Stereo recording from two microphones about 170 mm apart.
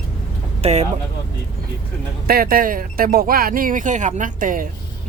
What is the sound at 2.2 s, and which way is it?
Speech, 60° right (ahead or behind).